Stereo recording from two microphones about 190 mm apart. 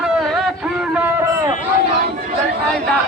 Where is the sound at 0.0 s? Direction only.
Centre (ahead or behind).